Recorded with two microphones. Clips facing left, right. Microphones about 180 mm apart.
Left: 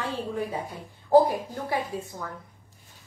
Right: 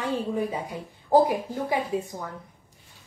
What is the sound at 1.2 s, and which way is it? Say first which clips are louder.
A woman's voice: right 2 dB; 15° right (ahead or behind).